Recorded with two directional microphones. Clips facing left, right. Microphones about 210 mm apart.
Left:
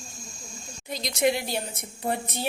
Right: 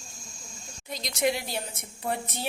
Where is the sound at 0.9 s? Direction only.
Centre (ahead or behind).